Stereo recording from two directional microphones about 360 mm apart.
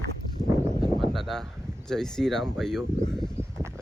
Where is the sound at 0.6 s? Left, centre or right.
Centre.